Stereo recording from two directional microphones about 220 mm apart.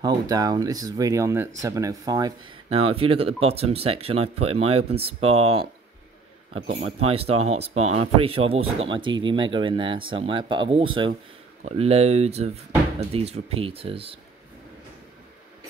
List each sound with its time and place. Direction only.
0.0 s speech: 15° right (ahead or behind)